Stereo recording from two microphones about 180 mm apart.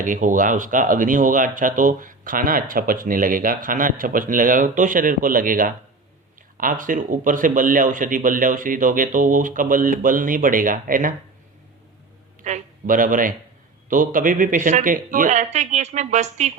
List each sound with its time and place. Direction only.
0.0 s speech: 45° right (ahead or behind)
12.4 s speech: 45° right (ahead or behind)